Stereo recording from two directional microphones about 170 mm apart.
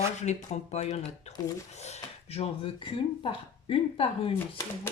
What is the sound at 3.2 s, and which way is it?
Speech, 35° left (ahead or behind).